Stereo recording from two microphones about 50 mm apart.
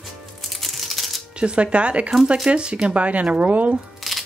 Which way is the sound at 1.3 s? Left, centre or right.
Right.